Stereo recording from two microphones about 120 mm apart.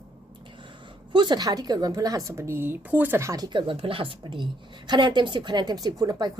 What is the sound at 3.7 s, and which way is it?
A woman's voice, 50° right (ahead or behind).